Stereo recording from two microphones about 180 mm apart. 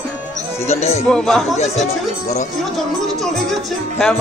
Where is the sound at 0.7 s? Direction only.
35° left (ahead or behind).